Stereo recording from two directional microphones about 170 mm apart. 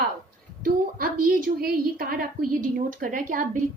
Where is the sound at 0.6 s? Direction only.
60° right (ahead or behind).